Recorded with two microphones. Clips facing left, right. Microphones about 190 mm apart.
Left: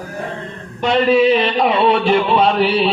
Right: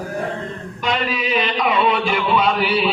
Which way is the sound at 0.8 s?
35° left (ahead or behind).